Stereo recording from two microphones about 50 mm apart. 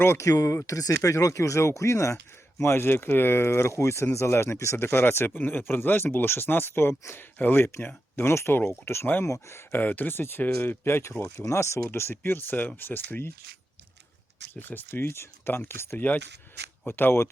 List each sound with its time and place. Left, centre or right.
0.2 s speech: left
2.7 s speech: left
4.9 s speech: left
7.2 s speech: left
9.2 s speech: left
9.7 s speech: left
11.4 s speech: left
11.9 s speech: left
14.5 s speech: left
16.0 s speech: left